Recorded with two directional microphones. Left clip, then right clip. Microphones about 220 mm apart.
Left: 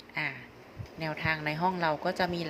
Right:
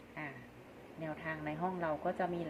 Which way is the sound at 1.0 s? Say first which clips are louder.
Left 10 dB; 30° left (ahead or behind).